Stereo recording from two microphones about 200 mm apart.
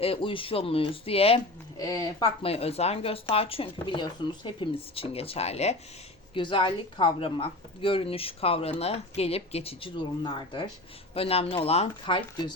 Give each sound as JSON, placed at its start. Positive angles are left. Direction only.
{"t": 0.0, "sound": "speech", "side_deg": 25}
{"t": 1.8, "sound": "speech", "side_deg": 15}
{"t": 2.4, "sound": "speech", "side_deg": 30}